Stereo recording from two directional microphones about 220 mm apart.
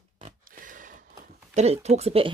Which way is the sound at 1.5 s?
30° right (ahead or behind).